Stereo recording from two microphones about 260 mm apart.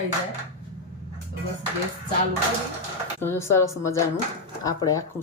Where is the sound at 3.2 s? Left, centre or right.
Centre.